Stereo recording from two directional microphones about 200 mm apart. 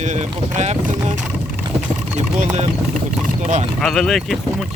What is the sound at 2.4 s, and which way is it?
Speech, 35° right (ahead or behind).